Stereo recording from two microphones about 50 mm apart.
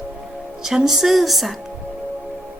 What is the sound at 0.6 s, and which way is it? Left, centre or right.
Speech, centre.